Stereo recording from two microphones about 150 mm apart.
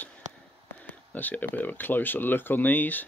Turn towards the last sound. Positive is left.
turn(degrees=10)  # may be behind; listen again after turning